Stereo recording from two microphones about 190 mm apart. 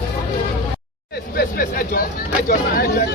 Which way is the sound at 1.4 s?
50° left (ahead or behind).